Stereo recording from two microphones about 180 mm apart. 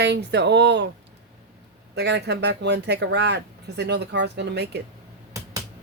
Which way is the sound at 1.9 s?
70° right (ahead or behind).